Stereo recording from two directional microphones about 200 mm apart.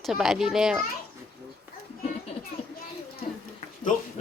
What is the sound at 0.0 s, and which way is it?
Speech, centre (ahead or behind).